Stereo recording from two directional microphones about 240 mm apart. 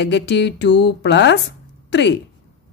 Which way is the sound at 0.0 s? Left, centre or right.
Left.